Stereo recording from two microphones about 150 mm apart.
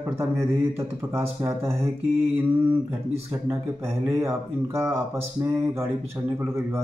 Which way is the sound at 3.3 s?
20° right (ahead or behind).